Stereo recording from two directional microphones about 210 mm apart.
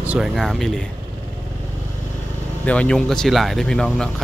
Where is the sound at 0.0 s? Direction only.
5° right (ahead or behind).